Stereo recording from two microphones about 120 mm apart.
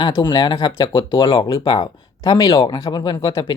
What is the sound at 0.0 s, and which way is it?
Speech, 40° left (ahead or behind).